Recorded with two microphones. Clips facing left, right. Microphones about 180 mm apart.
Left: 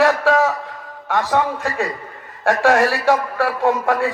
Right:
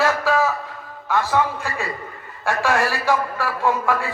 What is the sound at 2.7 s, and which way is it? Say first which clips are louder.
Speech: left 4 dB; 20° left (ahead or behind).